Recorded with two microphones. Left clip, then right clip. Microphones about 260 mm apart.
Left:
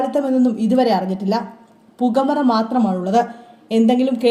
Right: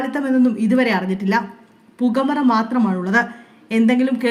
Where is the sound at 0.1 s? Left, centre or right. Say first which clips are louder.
Left 1 dB; centre.